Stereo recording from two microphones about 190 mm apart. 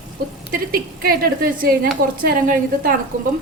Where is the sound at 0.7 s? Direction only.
50° right (ahead or behind).